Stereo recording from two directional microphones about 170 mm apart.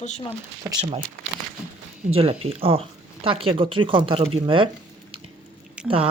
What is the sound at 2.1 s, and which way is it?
Speech, 35° right (ahead or behind).